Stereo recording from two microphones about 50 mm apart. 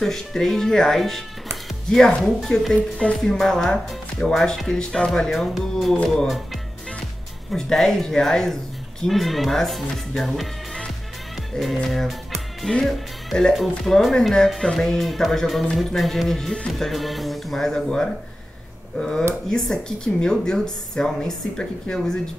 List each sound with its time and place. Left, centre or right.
0.0 s speech: centre
3.2 s speech: centre
11.5 s speech: centre